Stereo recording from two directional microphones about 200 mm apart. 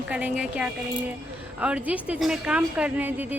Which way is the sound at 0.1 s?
5° right (ahead or behind).